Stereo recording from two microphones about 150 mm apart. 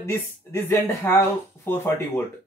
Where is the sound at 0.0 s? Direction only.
15° left (ahead or behind).